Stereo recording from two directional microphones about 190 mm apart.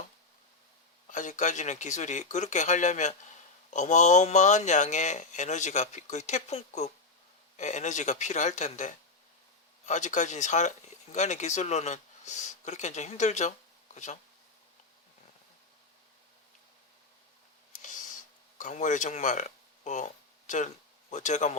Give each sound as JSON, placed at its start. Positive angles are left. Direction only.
{"t": 1.0, "sound": "speech", "side_deg": 40}
{"t": 18.5, "sound": "speech", "side_deg": 40}
{"t": 21.1, "sound": "speech", "side_deg": 40}